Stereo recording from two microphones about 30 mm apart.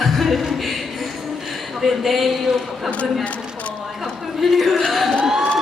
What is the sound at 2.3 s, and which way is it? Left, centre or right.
Speech, centre.